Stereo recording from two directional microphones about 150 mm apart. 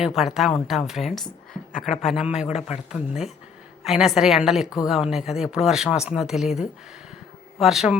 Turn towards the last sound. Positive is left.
turn(degrees=-5)  # may be behind; listen again after turning